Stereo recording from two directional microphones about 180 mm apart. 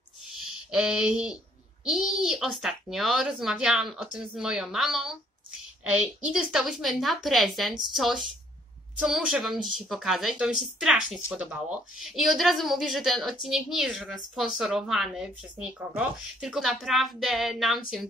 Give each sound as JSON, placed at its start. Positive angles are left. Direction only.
{"t": 0.7, "sound": "a woman's voice", "side_deg": -5}